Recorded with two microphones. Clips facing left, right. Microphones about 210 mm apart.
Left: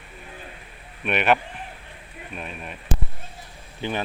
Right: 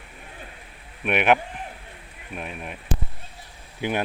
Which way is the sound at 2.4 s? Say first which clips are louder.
Right 2 dB; 10° right (ahead or behind).